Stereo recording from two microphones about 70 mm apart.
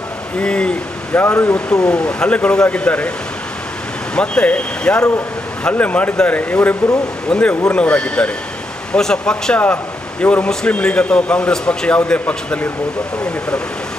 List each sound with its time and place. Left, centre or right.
0.4 s speech: centre
1.1 s speech: left
1.5 s a man's voice: centre
4.1 s a man's voice: centre
10.2 s a man's voice: left